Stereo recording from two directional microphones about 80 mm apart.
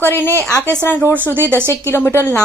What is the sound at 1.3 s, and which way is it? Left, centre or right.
Speech, right.